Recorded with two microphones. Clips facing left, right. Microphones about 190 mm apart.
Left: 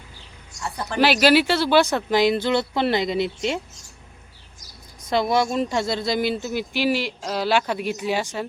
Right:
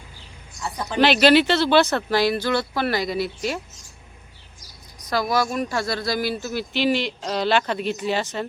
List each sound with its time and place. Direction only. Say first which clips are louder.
0.6 s speech: even; 15° right (ahead or behind)
0.9 s speech: right 1 dB; 5° left (ahead or behind); by 3.6 s 20° left (ahead or behind)
4.9 s speech: left 2 dB; 25° left (ahead or behind)